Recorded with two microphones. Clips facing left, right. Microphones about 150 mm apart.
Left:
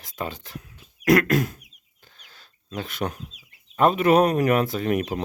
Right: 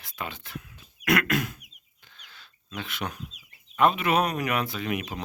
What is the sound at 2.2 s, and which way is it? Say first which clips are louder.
Chicken: right 3 dB; 40° left (ahead or behind).